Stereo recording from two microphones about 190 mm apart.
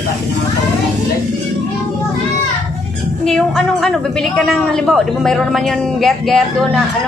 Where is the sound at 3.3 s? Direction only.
5° left (ahead or behind).